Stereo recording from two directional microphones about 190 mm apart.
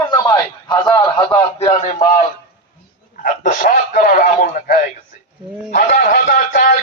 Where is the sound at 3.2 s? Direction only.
45° left (ahead or behind).